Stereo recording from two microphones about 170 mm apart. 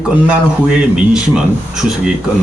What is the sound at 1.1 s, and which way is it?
Speech, 5° right (ahead or behind).